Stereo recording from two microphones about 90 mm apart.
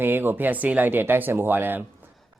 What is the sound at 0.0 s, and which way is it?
Speech, 25° right (ahead or behind).